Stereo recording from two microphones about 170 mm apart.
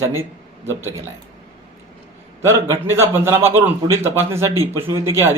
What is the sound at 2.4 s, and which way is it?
A man's voice, 15° right (ahead or behind).